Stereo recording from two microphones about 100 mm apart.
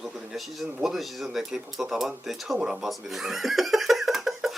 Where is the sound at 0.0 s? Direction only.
5° right (ahead or behind).